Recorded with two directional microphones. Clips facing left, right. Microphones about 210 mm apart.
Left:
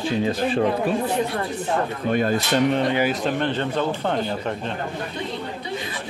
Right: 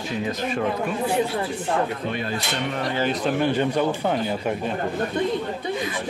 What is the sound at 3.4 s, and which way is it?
Speech, 10° right (ahead or behind).